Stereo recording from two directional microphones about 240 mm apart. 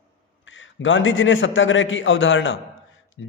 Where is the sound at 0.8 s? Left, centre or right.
Left.